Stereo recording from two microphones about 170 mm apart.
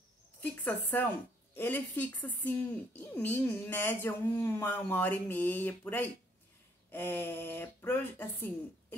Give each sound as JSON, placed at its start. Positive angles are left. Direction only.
{"t": 0.4, "sound": "a woman's voice", "side_deg": 10}